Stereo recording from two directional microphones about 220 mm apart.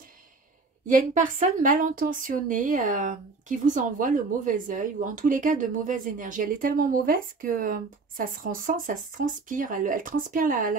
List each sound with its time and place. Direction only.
0.8 s a woman's voice: 35° right (ahead or behind)